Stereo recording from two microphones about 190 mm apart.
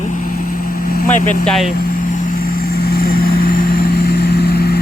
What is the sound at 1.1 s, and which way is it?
Speech, 40° left (ahead or behind).